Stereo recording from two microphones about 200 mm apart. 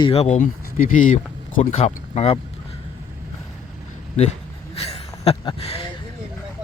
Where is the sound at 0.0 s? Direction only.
30° left (ahead or behind).